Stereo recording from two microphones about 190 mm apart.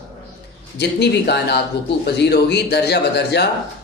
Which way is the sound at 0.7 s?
60° left (ahead or behind).